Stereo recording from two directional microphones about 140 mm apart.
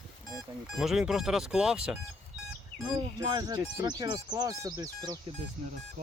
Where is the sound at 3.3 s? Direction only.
25° right (ahead or behind).